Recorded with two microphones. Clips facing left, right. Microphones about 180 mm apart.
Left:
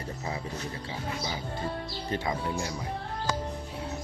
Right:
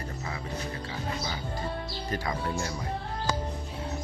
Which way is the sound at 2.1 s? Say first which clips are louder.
Left 1 dB; 15° left (ahead or behind).